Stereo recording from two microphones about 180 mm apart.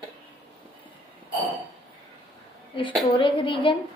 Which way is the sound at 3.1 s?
25° left (ahead or behind).